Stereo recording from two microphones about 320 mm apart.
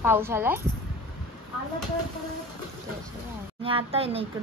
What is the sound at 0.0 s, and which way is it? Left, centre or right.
Speech, centre.